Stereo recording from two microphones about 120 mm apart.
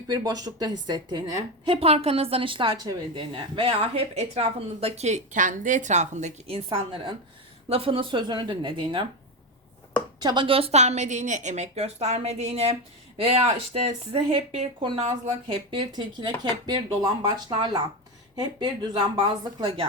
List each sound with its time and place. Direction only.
0.1 s a woman's voice: 30° right (ahead or behind); by 6.6 s 75° right (ahead or behind)
6.7 s a woman's voice: 45° right (ahead or behind)
10.2 s speech: 35° right (ahead or behind)
10.4 s a woman's voice: 50° right (ahead or behind)